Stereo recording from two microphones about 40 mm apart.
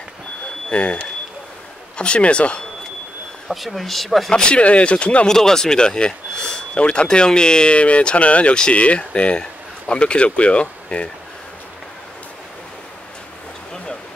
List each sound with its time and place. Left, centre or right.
0.7 s speech: left
3.4 s speech: centre
4.3 s speech: left
5.3 s speech: centre; by 11.1 s left